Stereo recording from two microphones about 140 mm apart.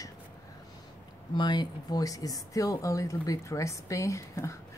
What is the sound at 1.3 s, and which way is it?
Speech, 30° left (ahead or behind).